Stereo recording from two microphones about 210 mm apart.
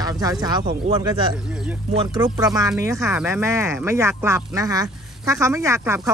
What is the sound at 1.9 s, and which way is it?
Speech, 20° right (ahead or behind).